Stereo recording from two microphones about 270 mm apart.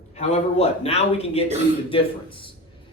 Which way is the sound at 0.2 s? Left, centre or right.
Left.